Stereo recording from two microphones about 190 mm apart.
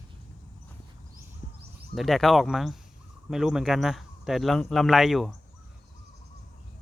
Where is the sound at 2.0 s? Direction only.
Centre (ahead or behind).